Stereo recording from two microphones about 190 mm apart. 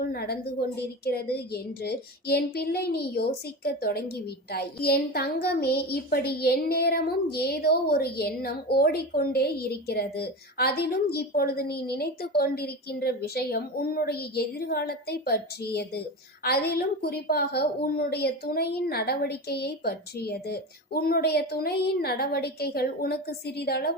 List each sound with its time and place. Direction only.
0.1 s a child's voice: 55° left (ahead or behind)